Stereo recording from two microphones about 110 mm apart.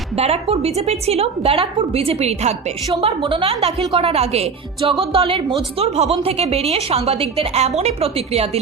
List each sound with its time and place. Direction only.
0.2 s a woman's voice: 65° right (ahead or behind)
2.9 s a woman's voice: 55° right (ahead or behind); by 4.4 s 70° right (ahead or behind)
4.9 s a woman's voice: 60° right (ahead or behind)
5.8 s a woman's voice: 70° right (ahead or behind)